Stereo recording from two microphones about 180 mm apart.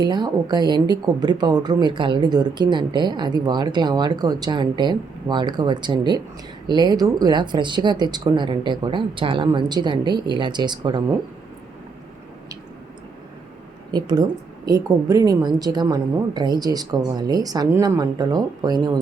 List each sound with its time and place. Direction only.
0.0 s speech: 25° right (ahead or behind)
13.9 s speech: 25° right (ahead or behind)